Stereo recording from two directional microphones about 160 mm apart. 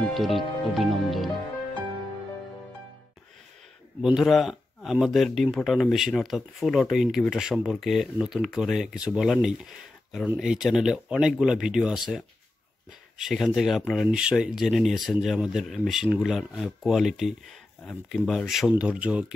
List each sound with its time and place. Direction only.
0.1 s speech: centre (ahead or behind)
4.0 s speech: centre (ahead or behind)
13.2 s speech: centre (ahead or behind)